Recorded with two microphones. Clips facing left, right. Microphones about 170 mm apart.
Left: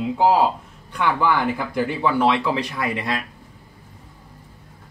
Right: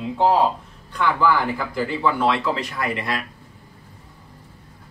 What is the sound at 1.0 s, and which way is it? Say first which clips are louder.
Speech: even; 20° left (ahead or behind).